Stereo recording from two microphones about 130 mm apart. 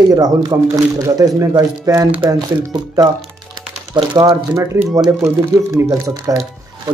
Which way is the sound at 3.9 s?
35° right (ahead or behind).